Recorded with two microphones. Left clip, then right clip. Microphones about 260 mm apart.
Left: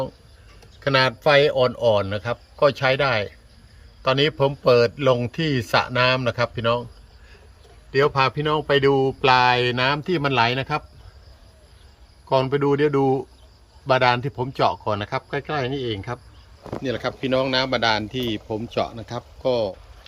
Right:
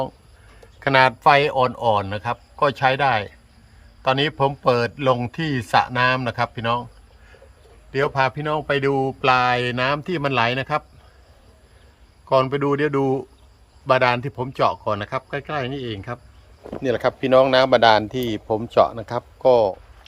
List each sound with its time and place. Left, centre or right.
0.8 s a man's voice: centre
4.7 s speech: right
5.4 s speech: centre
7.9 s speech: centre
12.3 s speech: centre
16.8 s speech: centre